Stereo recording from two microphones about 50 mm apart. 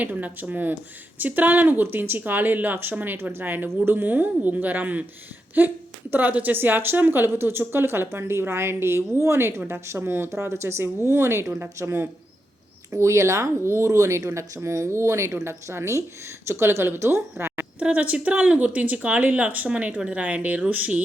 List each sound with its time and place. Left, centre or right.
0.0 s a woman's voice: right
10.2 s speech: right
12.9 s a woman's voice: right
17.7 s a woman's voice: right